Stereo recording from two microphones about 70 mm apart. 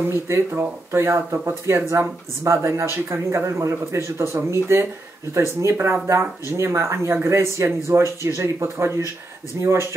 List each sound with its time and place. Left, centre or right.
0.0 s speech: right